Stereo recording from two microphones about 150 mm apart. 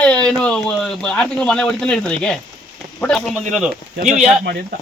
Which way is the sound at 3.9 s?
55° right (ahead or behind).